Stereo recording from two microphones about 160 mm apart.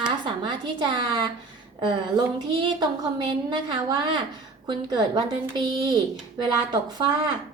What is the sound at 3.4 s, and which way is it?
Speech, 25° right (ahead or behind).